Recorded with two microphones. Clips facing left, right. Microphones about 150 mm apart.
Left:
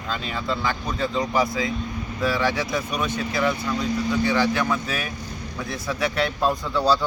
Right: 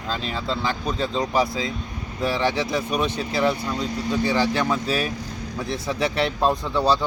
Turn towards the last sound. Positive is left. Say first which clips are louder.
# right 1 dB
turn(degrees=-25)  # may be behind; listen again after turning